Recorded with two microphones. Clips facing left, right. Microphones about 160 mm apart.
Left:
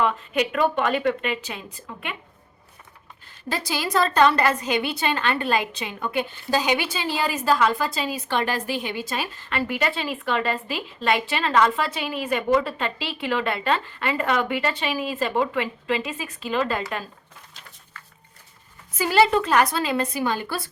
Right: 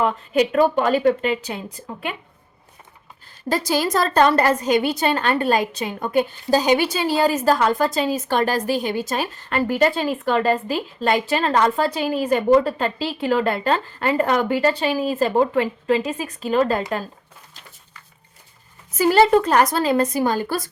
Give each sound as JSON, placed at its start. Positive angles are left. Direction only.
{"t": 0.0, "sound": "a woman's voice", "side_deg": -35}
{"t": 3.5, "sound": "a woman's voice", "side_deg": -45}
{"t": 18.9, "sound": "a woman's voice", "side_deg": -45}